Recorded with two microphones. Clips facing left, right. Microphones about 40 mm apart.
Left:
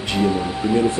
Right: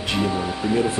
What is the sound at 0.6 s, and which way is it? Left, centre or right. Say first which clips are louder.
Speech: left 3 dB; centre.